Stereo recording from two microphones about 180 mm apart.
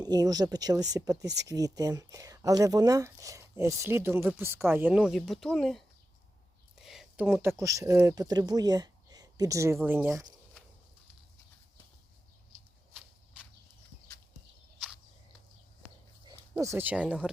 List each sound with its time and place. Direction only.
0.0 s speech: 20° right (ahead or behind); by 5.8 s centre (ahead or behind)
6.8 s speech: centre (ahead or behind)
12.9 s a sound: 5° right (ahead or behind)
16.2 s speech: 15° right (ahead or behind)